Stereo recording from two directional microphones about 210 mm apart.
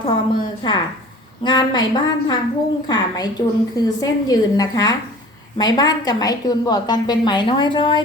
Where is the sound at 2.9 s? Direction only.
20° left (ahead or behind).